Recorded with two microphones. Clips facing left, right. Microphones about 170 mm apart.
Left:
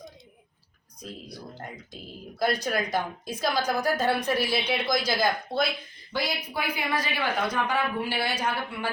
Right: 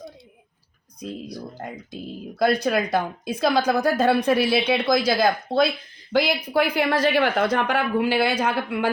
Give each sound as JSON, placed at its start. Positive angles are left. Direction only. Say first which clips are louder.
{"t": 2.4, "sound": "speech", "louder": "right 6 dB", "side_deg": -60}
{"t": 6.1, "sound": "speech", "louder": "right 10 dB", "side_deg": -80}